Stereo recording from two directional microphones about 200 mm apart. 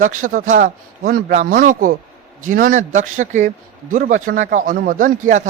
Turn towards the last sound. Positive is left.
turn(degrees=-40)  # may be behind; listen again after turning